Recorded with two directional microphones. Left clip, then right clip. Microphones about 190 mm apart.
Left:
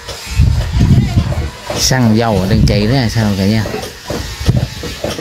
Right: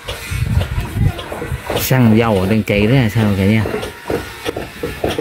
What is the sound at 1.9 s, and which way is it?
Speech, centre (ahead or behind).